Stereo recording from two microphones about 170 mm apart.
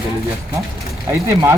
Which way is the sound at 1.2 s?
15° right (ahead or behind).